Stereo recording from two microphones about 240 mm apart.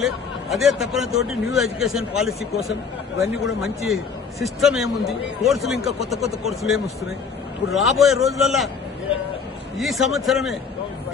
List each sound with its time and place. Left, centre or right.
0.5 s a man's voice: centre
9.7 s a man's voice: centre